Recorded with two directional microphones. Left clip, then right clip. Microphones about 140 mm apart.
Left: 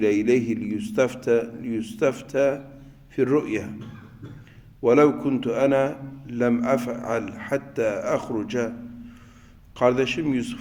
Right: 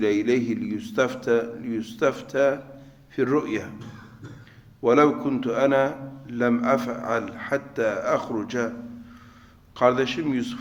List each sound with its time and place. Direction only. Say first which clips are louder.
0.0 s a man's voice: left 2 dB; 25° left (ahead or behind)
4.8 s a man's voice: left 1 dB; 25° left (ahead or behind)
9.7 s a man's voice: even; 25° left (ahead or behind)